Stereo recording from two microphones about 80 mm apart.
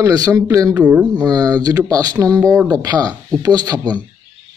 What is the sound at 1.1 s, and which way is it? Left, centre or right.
Speech, right.